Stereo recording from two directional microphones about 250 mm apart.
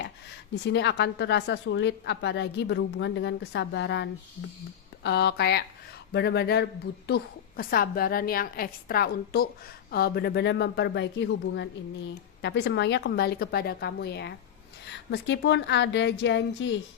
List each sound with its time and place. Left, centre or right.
0.6 s a woman's voice: left